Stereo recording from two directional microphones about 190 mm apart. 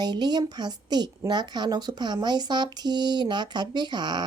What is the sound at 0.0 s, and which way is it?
A woman's voice, 20° right (ahead or behind).